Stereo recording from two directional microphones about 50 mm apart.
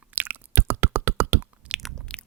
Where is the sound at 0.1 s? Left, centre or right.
Right.